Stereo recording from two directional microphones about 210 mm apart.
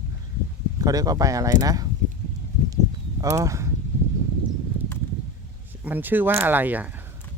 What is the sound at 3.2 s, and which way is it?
Speech, 15° right (ahead or behind).